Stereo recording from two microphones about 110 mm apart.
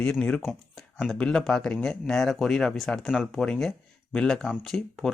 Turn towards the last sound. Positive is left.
turn(degrees=5)  # may be behind; listen again after turning